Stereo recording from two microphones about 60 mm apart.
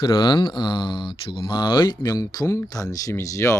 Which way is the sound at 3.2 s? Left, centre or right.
Left.